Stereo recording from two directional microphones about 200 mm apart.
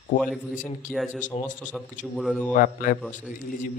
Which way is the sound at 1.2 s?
40° left (ahead or behind).